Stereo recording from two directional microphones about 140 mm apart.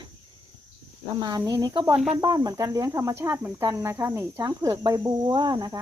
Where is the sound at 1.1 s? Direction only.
30° right (ahead or behind).